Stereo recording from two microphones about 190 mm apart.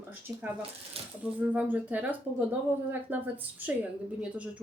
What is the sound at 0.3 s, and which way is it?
A woman's voice, 10° right (ahead or behind).